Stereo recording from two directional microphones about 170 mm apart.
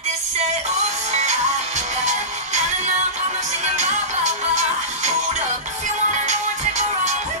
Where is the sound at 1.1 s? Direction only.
40° right (ahead or behind).